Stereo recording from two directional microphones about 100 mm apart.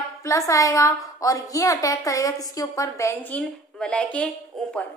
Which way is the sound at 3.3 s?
10° left (ahead or behind).